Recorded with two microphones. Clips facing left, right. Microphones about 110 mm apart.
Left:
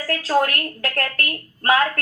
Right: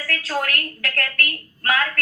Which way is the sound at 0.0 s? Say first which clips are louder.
Left 6 dB; 35° left (ahead or behind).